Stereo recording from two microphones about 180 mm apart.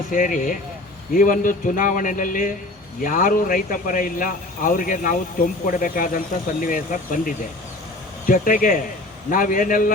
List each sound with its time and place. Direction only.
0.1 s speech: 50° left (ahead or behind)